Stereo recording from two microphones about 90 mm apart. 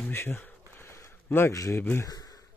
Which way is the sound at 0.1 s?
25° left (ahead or behind).